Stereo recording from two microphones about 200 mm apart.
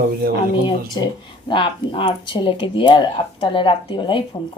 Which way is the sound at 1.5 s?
25° left (ahead or behind).